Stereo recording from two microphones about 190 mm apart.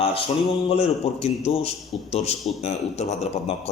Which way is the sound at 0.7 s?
30° left (ahead or behind).